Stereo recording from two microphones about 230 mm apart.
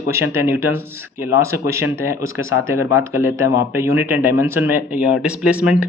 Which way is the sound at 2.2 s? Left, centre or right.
Left.